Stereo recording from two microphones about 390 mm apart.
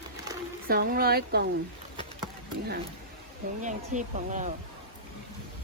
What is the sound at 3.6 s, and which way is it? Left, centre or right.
Speech, centre.